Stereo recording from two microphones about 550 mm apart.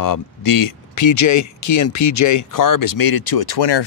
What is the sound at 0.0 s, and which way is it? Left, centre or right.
Speech, left.